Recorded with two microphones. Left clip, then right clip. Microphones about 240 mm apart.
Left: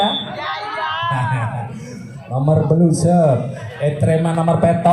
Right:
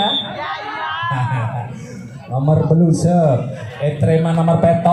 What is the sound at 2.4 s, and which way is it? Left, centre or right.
A man's voice, left.